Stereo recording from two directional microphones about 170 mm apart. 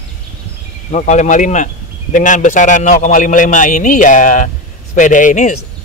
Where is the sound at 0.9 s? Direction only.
45° left (ahead or behind).